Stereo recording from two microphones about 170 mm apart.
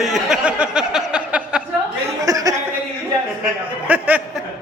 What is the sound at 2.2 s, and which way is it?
Chuckle, 20° right (ahead or behind).